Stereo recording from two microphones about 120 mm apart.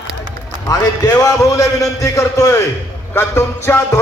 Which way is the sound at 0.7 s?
30° left (ahead or behind).